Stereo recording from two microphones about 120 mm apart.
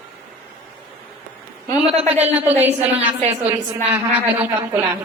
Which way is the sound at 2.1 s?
15° right (ahead or behind).